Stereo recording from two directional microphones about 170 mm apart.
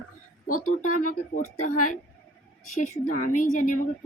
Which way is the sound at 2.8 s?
50° left (ahead or behind).